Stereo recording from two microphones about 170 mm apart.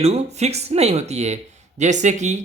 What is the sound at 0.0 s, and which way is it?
Speech, 40° right (ahead or behind).